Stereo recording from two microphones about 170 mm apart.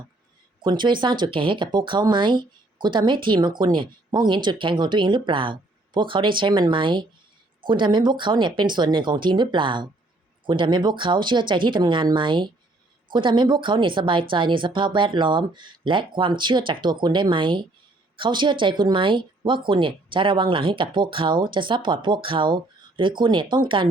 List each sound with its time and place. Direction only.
0.6 s speech: 25° right (ahead or behind)